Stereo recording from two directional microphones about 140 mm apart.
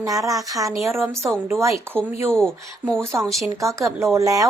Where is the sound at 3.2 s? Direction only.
Centre (ahead or behind).